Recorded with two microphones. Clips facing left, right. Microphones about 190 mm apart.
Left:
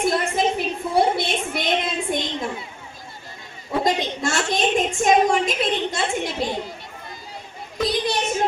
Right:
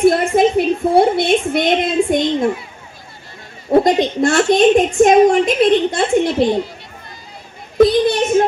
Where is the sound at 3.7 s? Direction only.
55° right (ahead or behind).